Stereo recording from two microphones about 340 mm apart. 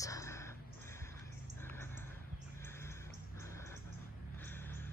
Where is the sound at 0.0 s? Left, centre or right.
Centre.